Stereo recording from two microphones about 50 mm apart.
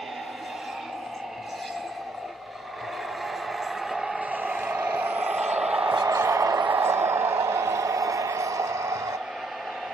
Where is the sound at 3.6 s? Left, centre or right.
Centre.